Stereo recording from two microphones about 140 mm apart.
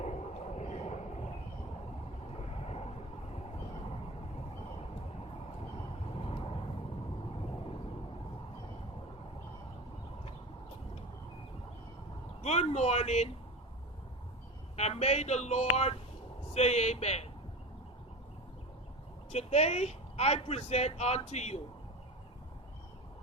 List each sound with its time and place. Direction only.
0.0 s vehicle: 50° left (ahead or behind)
2.3 s vehicle: 50° left (ahead or behind)
6.1 s vehicle: 45° left (ahead or behind)
12.4 s speech: 50° left (ahead or behind)
14.8 s speech: 50° left (ahead or behind)
19.3 s speech: 50° left (ahead or behind)